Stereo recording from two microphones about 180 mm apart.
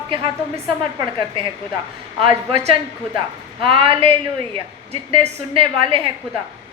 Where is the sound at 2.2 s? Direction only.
35° right (ahead or behind).